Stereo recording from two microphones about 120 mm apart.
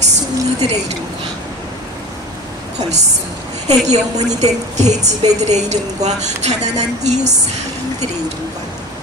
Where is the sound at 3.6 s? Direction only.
70° right (ahead or behind).